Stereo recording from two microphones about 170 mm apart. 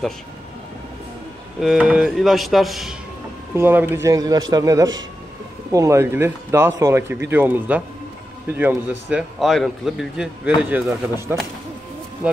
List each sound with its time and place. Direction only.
1.6 s a man's voice: 5° right (ahead or behind)
3.5 s a man's voice: 10° right (ahead or behind)